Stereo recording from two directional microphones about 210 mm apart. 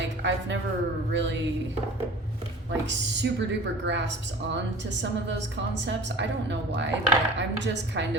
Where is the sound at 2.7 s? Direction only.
55° right (ahead or behind).